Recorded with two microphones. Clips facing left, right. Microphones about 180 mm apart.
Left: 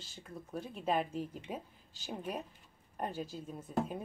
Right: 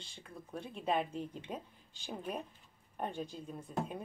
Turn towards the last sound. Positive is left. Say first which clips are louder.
# left 3 dB
turn(degrees=5)  # may be behind; listen again after turning